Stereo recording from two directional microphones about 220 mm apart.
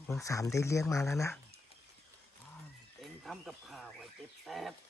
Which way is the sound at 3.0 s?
Centre (ahead or behind).